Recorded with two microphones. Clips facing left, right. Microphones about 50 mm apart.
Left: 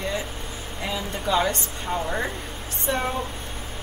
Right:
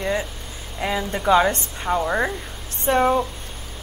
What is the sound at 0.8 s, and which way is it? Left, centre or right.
A woman's voice, right.